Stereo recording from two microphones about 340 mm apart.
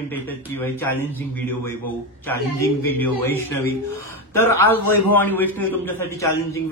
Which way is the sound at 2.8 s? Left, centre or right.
Centre.